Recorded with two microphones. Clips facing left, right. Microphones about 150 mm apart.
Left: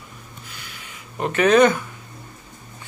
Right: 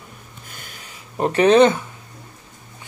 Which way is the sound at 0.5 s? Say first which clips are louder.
Right 2 dB; 45° right (ahead or behind).